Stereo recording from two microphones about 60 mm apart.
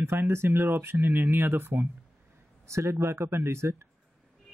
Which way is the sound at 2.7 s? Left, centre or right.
Right.